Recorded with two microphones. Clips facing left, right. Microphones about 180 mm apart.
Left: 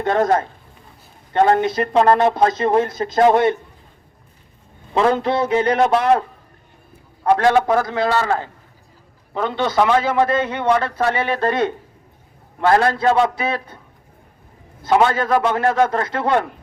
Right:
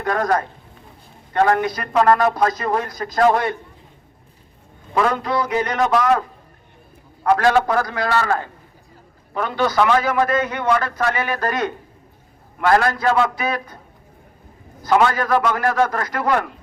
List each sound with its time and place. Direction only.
0.0 s a man's voice: 25° left (ahead or behind)
4.9 s a man's voice: 25° left (ahead or behind)
7.3 s a man's voice: 25° left (ahead or behind)
14.8 s a man's voice: 25° left (ahead or behind)